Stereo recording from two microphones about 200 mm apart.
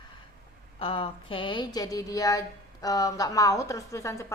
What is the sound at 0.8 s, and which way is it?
A woman's voice, 25° left (ahead or behind).